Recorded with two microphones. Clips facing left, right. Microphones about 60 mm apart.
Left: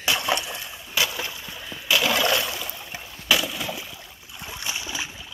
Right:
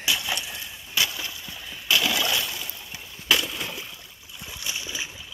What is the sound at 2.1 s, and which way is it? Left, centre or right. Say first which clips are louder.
Boat: left 4 dB; left.